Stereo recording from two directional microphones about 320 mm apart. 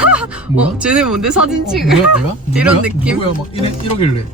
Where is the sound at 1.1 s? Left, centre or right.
Centre.